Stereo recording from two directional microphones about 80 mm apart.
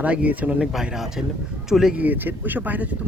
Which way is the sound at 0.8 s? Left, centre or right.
Centre.